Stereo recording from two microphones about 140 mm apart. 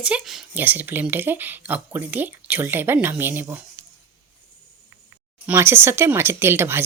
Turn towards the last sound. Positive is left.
turn(degrees=-15)  # may be behind; listen again after turning